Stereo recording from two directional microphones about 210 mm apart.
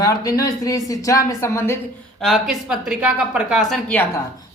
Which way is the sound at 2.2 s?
Centre (ahead or behind).